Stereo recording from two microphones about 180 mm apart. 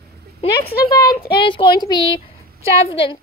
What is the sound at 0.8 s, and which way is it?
A woman's voice, 20° left (ahead or behind).